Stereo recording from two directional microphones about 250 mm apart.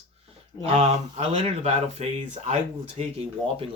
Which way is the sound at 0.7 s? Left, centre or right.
Right.